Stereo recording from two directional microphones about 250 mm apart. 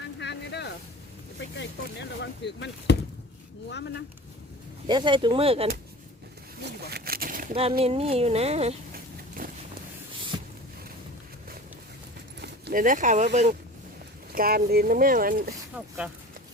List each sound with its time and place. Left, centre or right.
0.2 s a sound: left
1.5 s speech: left
4.9 s speech: centre
6.8 s a sound: right
7.8 s speech: right
12.4 s speech: right